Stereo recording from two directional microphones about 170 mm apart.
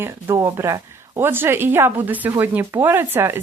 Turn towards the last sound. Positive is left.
turn(degrees=-15)  # may be behind; listen again after turning